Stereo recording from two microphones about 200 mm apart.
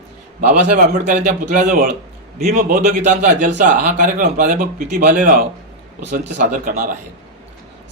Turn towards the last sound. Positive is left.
turn(degrees=-45)  # may be behind; listen again after turning